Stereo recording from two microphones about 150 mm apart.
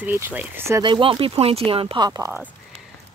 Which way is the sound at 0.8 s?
30° right (ahead or behind).